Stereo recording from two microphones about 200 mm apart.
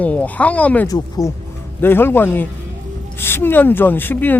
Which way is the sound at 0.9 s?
20° left (ahead or behind).